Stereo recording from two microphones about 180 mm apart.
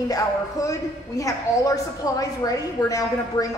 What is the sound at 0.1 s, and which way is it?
A woman's voice, 20° left (ahead or behind).